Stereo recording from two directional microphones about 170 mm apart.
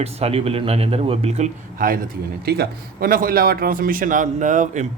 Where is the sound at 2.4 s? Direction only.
65° right (ahead or behind).